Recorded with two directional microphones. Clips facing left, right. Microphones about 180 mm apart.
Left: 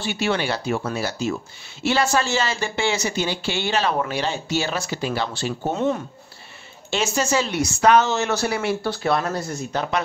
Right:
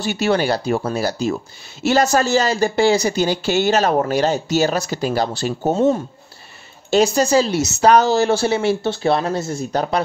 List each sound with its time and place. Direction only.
0.0 s speech: 40° right (ahead or behind)